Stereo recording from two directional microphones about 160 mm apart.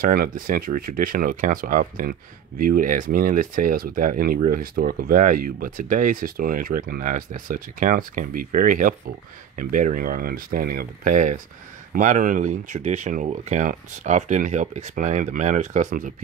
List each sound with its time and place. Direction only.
0.0 s speech: 65° right (ahead or behind)